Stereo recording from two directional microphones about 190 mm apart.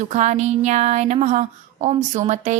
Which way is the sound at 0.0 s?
40° right (ahead or behind).